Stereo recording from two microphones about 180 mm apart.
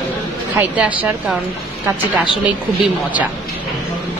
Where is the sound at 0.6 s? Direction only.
10° right (ahead or behind).